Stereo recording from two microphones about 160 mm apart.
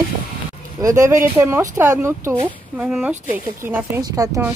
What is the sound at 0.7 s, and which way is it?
Speech, 20° right (ahead or behind).